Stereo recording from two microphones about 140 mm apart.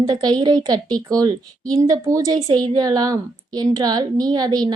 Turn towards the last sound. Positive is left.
turn(degrees=-30)  # may be behind; listen again after turning